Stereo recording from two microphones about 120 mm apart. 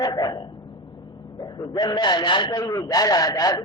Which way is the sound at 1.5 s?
35° left (ahead or behind).